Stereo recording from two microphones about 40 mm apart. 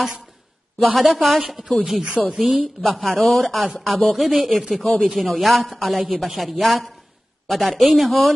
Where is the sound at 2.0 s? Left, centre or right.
Right.